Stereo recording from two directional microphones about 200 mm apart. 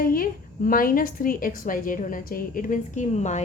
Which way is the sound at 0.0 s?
45° left (ahead or behind).